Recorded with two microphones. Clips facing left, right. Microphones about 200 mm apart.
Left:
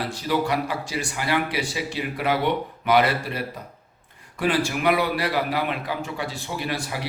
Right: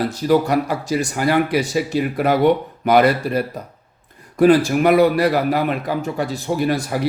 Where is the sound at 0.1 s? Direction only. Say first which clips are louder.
Right 6 dB; 45° right (ahead or behind).